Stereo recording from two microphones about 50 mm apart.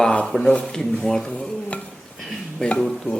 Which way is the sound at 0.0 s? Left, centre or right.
Centre.